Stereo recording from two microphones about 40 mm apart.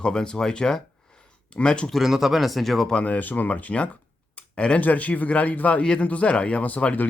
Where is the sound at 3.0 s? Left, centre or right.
Left.